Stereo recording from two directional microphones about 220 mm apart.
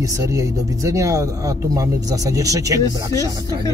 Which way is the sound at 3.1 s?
15° left (ahead or behind).